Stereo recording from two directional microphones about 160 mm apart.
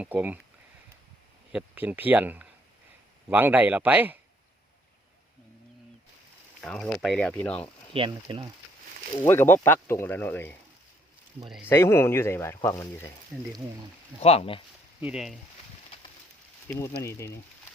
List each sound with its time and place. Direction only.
0.0 s speech: 10° right (ahead or behind)
1.5 s speech: 10° right (ahead or behind)
6.6 s speech: 5° left (ahead or behind)
7.9 s speech: 30° right (ahead or behind)
9.3 s speech: 15° left (ahead or behind)
11.4 s speech: centre (ahead or behind)
11.7 s speech: 15° left (ahead or behind)
13.3 s speech: centre (ahead or behind)
14.2 s speech: 40° left (ahead or behind)
15.0 s speech: 5° right (ahead or behind)
17.0 s speech: 15° left (ahead or behind)